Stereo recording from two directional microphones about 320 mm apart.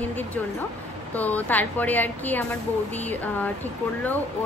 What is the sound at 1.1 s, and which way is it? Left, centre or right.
A woman's voice, centre.